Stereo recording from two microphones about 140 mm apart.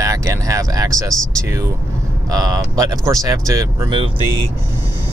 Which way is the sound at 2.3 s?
30° right (ahead or behind).